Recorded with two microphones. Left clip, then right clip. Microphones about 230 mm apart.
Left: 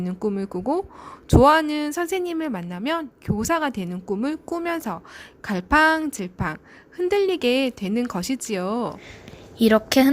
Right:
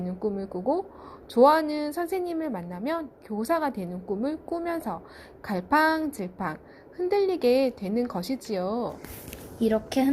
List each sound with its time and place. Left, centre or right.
0.3 s a woman's voice: left